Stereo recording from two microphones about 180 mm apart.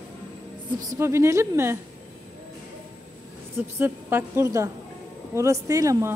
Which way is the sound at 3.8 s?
15° right (ahead or behind).